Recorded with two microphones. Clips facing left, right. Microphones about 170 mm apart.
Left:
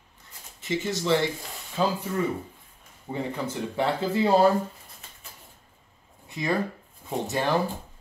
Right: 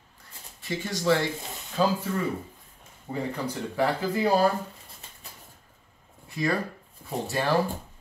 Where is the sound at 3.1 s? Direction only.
25° left (ahead or behind).